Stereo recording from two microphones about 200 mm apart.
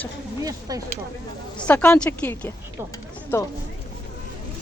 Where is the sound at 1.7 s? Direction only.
5° left (ahead or behind).